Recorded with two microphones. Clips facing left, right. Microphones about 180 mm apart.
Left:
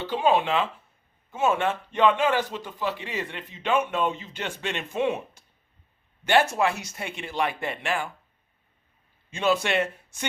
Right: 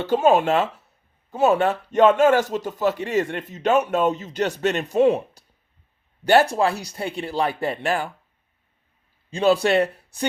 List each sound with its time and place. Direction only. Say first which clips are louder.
0.0 s a man's voice: right 5 dB; 45° right (ahead or behind)
9.3 s speech: right 6 dB; 35° right (ahead or behind)